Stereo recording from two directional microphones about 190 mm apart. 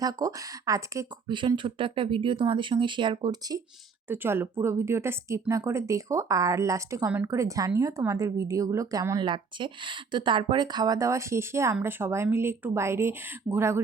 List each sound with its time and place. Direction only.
0.0 s speech: 20° right (ahead or behind)
4.1 s speech: 10° right (ahead or behind)